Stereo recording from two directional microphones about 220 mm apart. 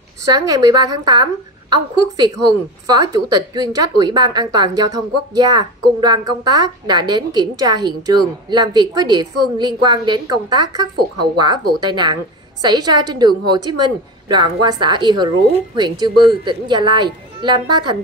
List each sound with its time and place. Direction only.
0.2 s a woman's voice: 15° right (ahead or behind)